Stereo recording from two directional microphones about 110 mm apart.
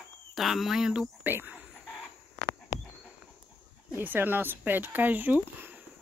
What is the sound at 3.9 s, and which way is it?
Speech, 15° right (ahead or behind).